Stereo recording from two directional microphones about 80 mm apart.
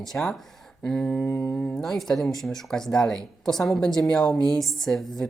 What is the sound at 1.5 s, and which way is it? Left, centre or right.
Speech, centre.